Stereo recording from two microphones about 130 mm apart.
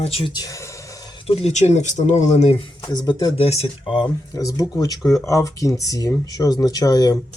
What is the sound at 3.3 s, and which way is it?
Speech, 50° left (ahead or behind).